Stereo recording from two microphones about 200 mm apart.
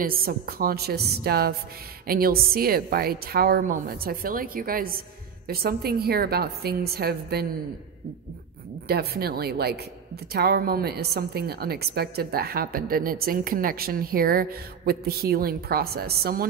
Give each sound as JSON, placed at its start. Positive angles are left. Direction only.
{"t": 0.0, "sound": "a woman's voice", "side_deg": -50}
{"t": 8.8, "sound": "a woman's voice", "side_deg": -50}